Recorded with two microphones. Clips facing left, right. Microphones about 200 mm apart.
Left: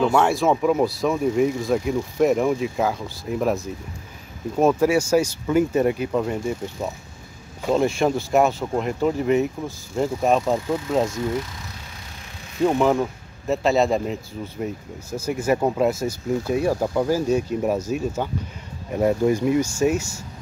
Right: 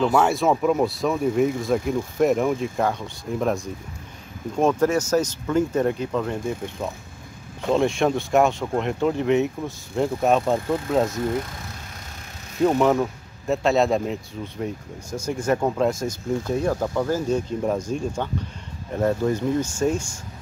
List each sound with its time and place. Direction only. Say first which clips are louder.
0.0 s speech: left 1 dB; centre (ahead or behind)
12.5 s speech: even; centre (ahead or behind)